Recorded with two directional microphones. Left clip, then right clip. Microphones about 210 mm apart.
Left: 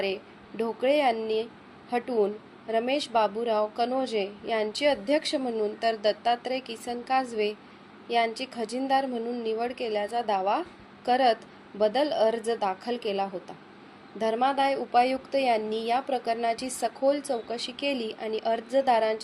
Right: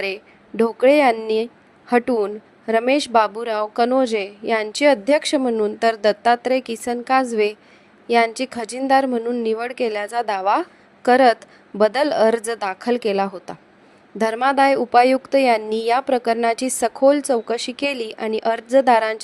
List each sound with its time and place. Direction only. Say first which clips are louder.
0.0 s a woman's voice: right 5 dB; 55° right (ahead or behind)